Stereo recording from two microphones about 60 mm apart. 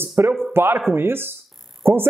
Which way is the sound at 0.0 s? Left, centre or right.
Right.